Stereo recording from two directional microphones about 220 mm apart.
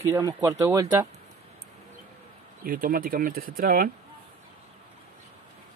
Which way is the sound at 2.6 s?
40° right (ahead or behind).